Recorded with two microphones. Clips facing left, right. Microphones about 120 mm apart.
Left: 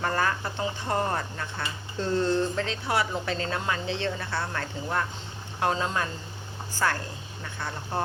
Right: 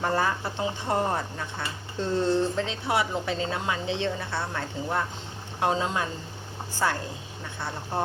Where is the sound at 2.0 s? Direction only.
20° right (ahead or behind).